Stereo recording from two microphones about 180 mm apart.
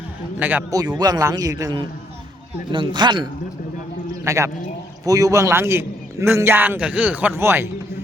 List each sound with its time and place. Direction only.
0.3 s a man's voice: 10° right (ahead or behind)
0.9 s a man's voice: 20° right (ahead or behind)